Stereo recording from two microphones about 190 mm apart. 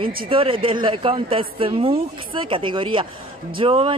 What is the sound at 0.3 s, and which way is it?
Speech, 30° right (ahead or behind).